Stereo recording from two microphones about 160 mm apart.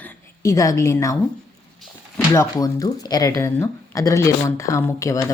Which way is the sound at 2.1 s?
15° left (ahead or behind).